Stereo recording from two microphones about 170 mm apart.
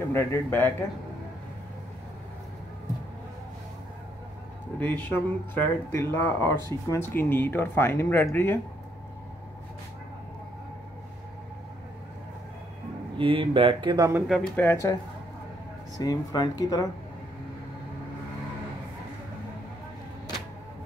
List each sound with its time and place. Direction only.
0.1 s speech: 15° left (ahead or behind)
4.7 s speech: 10° left (ahead or behind)
13.2 s speech: 30° right (ahead or behind)
14.2 s speech: centre (ahead or behind)
14.6 s speech: 15° left (ahead or behind)
16.0 s speech: 20° left (ahead or behind)